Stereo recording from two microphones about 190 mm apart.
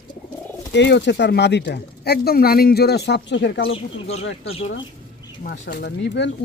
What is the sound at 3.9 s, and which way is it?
Speech, 35° left (ahead or behind).